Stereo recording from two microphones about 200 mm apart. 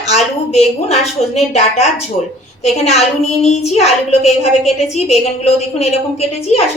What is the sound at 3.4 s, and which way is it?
A woman's voice, 30° left (ahead or behind).